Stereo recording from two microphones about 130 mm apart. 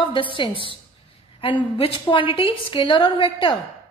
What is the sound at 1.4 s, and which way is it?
A woman's voice, 40° left (ahead or behind).